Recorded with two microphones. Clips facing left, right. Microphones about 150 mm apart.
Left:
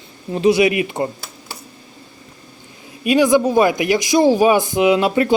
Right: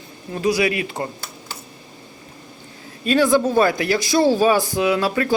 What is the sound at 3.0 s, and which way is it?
Speech, 15° left (ahead or behind).